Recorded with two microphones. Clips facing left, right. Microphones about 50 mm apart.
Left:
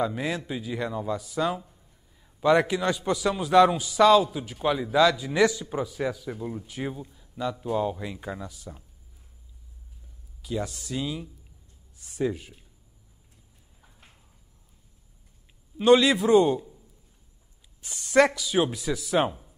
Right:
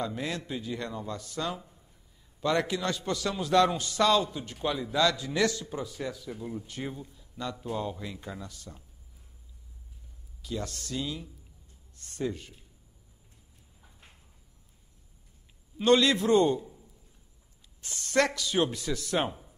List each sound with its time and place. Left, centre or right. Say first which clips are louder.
0.0 s a man's voice: left 5 dB; centre
6.6 s a man's voice: left 4 dB; centre
10.4 s a man's voice: left 4 dB; centre
13.7 s a sound: left 1 dB; centre
15.8 s a man's voice: left 4 dB; centre
17.8 s speech: left 6 dB; centre